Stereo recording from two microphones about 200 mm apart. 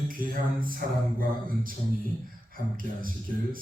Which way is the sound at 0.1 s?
45° right (ahead or behind).